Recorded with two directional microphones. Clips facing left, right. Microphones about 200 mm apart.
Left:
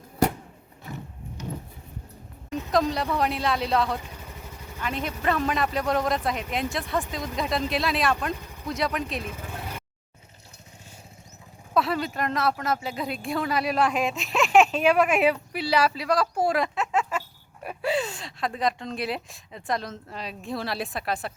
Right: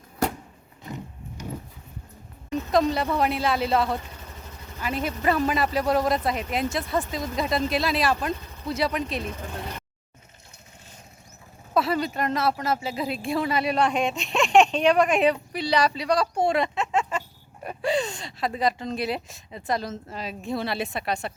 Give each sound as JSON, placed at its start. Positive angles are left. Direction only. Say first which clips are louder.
{"t": 0.9, "sound": "a sound", "louder": "right 2 dB", "side_deg": -15}
{"t": 2.7, "sound": "speech", "louder": "right 2 dB", "side_deg": 0}
{"t": 3.9, "sound": "vehicle", "louder": "right 1 dB", "side_deg": 10}
{"t": 4.8, "sound": "speech", "louder": "right 2 dB", "side_deg": -5}
{"t": 8.3, "sound": "speech", "louder": "right 2 dB", "side_deg": 10}
{"t": 8.6, "sound": "speech", "louder": "right 2 dB", "side_deg": 0}
{"t": 11.7, "sound": "speech", "louder": "right 1 dB", "side_deg": 0}